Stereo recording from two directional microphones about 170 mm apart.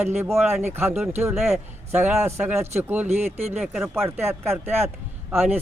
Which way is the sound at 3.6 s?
5° right (ahead or behind).